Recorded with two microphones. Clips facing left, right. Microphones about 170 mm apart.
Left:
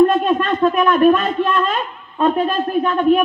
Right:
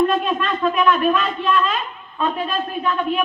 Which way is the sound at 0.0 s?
45° left (ahead or behind).